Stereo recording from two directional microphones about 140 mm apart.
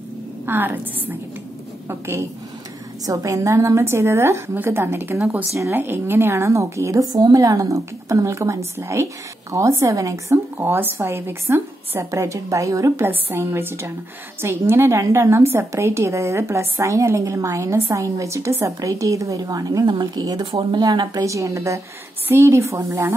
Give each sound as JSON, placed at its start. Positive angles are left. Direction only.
{"t": 0.5, "sound": "a woman's voice", "side_deg": -15}